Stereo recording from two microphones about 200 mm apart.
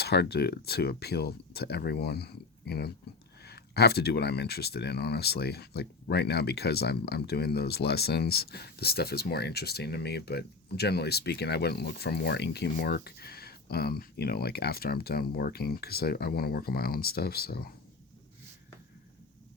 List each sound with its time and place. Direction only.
0.0 s speech: 55° left (ahead or behind)